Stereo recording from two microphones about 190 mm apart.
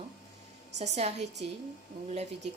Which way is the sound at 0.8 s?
35° right (ahead or behind).